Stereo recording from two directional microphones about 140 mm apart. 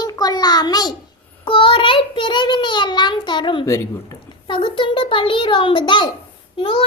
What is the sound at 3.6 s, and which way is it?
Speech, 20° left (ahead or behind).